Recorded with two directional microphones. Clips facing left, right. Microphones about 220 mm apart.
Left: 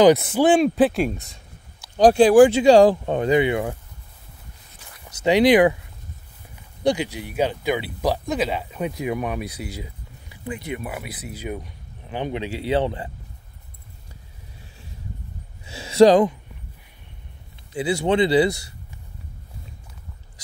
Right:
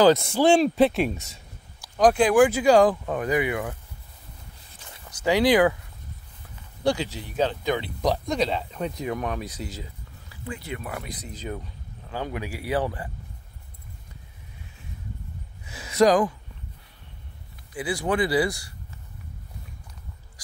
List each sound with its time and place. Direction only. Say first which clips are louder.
0.2 s speech: left 2 dB; 5° left (ahead or behind)
1.8 s speech: left 5 dB; 30° left (ahead or behind)
5.1 s speech: left 4 dB; 20° left (ahead or behind)
6.8 s speech: left 3 dB; 15° left (ahead or behind)
12.1 s speech: left 4 dB; 20° left (ahead or behind)
15.6 s speech: left 6 dB; 25° left (ahead or behind)
17.7 s speech: left 5 dB; 25° left (ahead or behind)
20.4 s a sound: left 2 dB; 20° left (ahead or behind)